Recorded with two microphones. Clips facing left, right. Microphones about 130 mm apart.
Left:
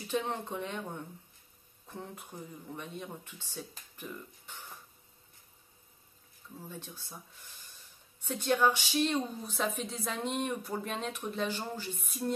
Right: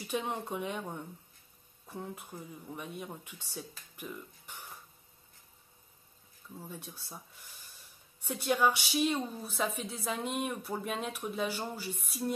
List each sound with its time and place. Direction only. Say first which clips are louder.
0.1 s a woman's voice: left 1 dB; 10° right (ahead or behind)
3.9 s music: right 1 dB; 10° right (ahead or behind)
6.7 s a woman's voice: even; 10° right (ahead or behind)
8.2 s a woman's voice: left 1 dB; 10° right (ahead or behind)